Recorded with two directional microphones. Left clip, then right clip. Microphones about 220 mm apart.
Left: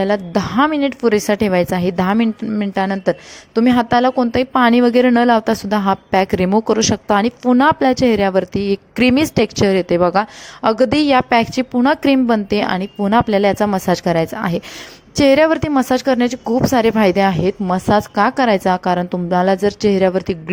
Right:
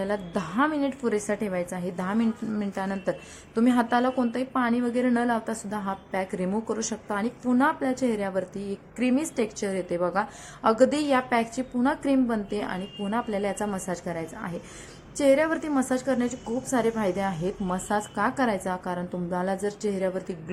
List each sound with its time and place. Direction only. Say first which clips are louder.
0.0 s a woman's voice: left 12 dB; 35° left (ahead or behind)